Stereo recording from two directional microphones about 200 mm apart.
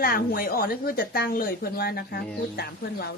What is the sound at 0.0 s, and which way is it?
A woman's voice, 45° left (ahead or behind).